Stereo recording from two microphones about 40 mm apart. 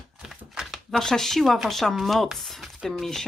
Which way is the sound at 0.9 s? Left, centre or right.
Centre.